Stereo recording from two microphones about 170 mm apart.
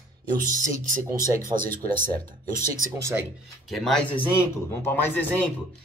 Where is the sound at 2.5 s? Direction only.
55° right (ahead or behind).